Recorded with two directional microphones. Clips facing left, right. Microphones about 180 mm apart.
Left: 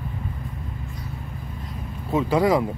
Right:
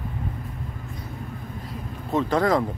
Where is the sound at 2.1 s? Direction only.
10° left (ahead or behind).